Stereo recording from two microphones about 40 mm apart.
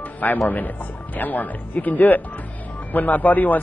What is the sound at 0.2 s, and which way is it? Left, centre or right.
Speech, left.